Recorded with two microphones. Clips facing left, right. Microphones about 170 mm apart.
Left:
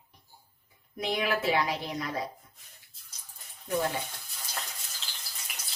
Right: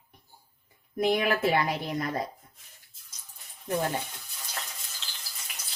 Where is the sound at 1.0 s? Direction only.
50° right (ahead or behind).